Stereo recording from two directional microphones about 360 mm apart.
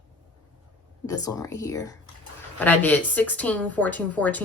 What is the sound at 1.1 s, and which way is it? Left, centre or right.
A woman's voice, centre.